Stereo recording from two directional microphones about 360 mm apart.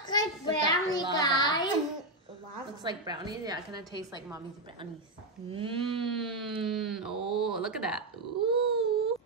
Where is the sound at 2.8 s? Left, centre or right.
Centre.